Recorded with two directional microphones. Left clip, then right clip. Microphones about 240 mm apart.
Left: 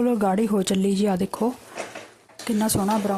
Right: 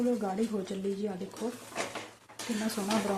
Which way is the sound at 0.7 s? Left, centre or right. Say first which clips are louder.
Left 13 dB; left.